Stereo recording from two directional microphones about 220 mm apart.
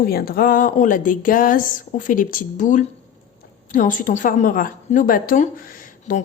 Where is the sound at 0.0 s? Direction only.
45° left (ahead or behind).